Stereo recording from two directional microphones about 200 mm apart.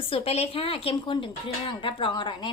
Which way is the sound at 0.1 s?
30° left (ahead or behind).